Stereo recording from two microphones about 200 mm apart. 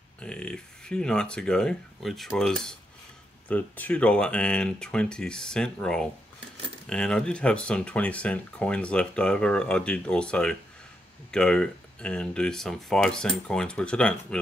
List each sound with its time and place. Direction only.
0.2 s speech: 5° left (ahead or behind)